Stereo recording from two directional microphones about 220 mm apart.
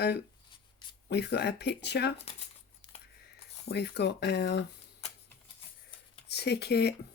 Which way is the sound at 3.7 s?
50° left (ahead or behind).